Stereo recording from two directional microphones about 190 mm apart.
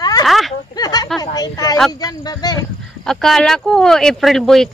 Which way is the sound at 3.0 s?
Centre (ahead or behind).